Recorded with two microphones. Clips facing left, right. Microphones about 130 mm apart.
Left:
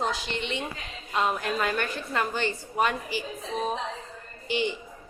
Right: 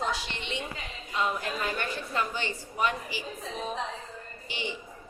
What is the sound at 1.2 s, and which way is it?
A woman's voice, 75° left (ahead or behind).